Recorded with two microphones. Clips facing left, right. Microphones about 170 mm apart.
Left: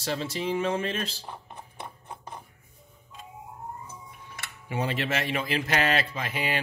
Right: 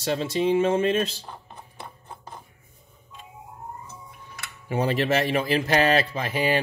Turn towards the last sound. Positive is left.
turn(degrees=-35)  # may be behind; listen again after turning